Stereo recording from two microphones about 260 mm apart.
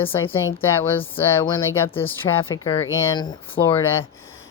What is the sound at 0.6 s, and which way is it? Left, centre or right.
Speech, centre.